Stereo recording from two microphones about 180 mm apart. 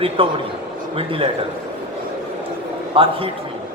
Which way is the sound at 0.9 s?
30° right (ahead or behind).